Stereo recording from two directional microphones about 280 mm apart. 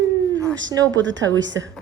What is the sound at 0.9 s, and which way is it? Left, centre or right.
Speech, right.